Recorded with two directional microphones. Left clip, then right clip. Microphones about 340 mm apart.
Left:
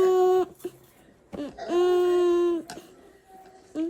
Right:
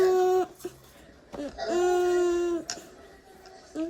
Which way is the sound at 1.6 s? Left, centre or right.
Centre.